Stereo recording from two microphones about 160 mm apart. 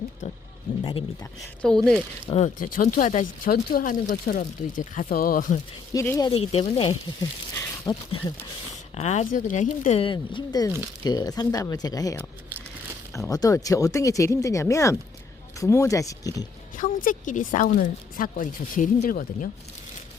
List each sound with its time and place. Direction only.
1.6 s speech: 5° left (ahead or behind)
2.6 s a woman's voice: 55° left (ahead or behind)
3.5 s a woman's voice: 65° left (ahead or behind)
5.9 s speech: 20° left (ahead or behind)
6.3 s speech: 40° left (ahead or behind)
7.5 s speech: 20° left (ahead or behind)
9.0 s speech: 45° left (ahead or behind)
10.0 s speech: 30° left (ahead or behind)
16.7 s a woman's voice: 55° left (ahead or behind)